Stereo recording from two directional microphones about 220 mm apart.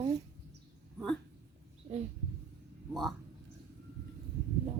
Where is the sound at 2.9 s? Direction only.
Centre (ahead or behind).